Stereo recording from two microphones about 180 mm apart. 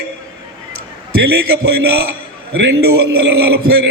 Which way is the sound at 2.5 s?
75° right (ahead or behind).